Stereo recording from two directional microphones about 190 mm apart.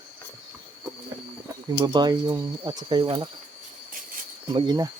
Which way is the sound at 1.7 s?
20° right (ahead or behind).